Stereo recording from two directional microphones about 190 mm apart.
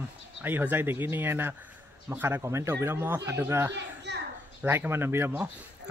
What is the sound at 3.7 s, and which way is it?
Children playing, 65° right (ahead or behind).